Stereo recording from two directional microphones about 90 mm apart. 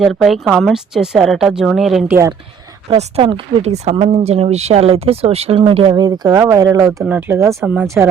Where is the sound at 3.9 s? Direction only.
90° right.